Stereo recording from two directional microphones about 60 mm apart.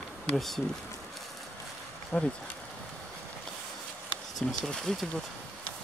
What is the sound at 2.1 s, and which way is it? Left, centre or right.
Speech, left.